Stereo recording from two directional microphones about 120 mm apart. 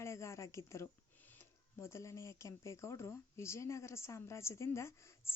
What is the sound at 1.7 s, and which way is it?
Speech, 25° left (ahead or behind).